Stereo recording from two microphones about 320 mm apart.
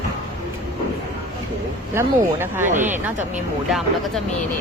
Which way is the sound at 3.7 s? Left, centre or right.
Centre.